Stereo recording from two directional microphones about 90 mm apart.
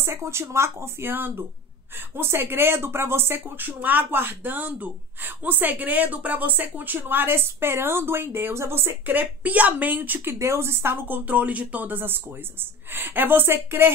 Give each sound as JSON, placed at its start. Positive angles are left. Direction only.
{"t": 0.0, "sound": "speech", "side_deg": -30}
{"t": 10.4, "sound": "speech", "side_deg": -30}